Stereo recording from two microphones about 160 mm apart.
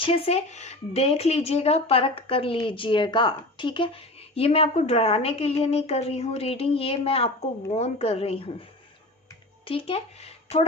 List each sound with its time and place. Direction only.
0.0 s speech: 40° left (ahead or behind)
9.6 s speech: 35° left (ahead or behind)